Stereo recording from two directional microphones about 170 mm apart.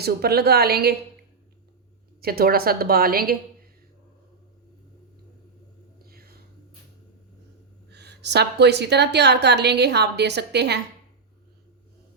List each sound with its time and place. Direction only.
0.0 s a woman's voice: 65° right (ahead or behind)
2.2 s a woman's voice: 60° right (ahead or behind)
6.1 s whispering: 65° right (ahead or behind)
7.9 s a woman's voice: 80° right